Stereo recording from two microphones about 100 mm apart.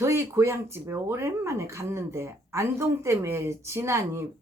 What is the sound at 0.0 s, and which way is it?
Speech, 25° right (ahead or behind).